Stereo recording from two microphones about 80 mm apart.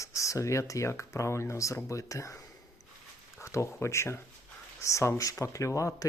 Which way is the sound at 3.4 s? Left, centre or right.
Left.